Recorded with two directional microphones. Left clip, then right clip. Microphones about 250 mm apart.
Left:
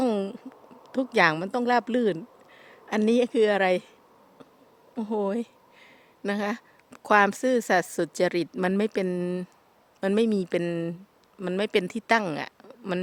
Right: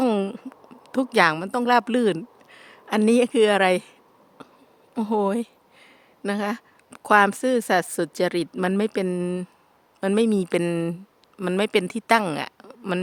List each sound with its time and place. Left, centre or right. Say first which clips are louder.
0.0 s speech: right 4 dB; centre
4.4 s a sound: right 7 dB; centre
4.9 s speech: right 5 dB; centre